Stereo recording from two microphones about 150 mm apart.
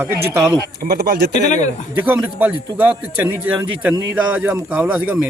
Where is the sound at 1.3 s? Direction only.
55° left (ahead or behind).